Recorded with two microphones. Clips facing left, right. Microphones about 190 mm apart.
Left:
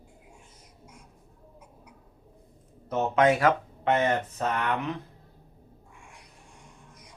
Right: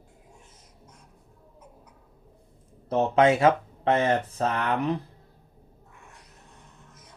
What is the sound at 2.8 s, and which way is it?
Speech, 30° right (ahead or behind).